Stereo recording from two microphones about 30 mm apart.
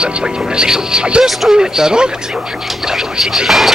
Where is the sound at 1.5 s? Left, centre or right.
Right.